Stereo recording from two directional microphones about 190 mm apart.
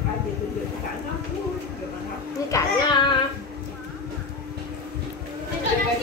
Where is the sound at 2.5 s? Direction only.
25° left (ahead or behind).